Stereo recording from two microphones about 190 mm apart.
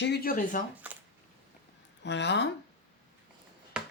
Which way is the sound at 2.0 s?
65° left (ahead or behind).